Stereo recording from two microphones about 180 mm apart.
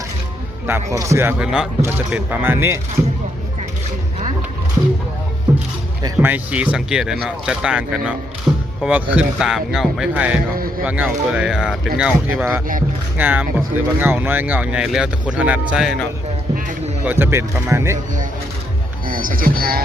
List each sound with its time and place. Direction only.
0.7 s speech: 15° right (ahead or behind)
6.0 s speech: 20° right (ahead or behind)
6.3 s speech: 5° right (ahead or behind)
8.5 s music: 10° right (ahead or behind)
8.8 s speech: 10° right (ahead or behind)
17.1 s speech: 10° right (ahead or behind)
19.0 s speech: 50° right (ahead or behind)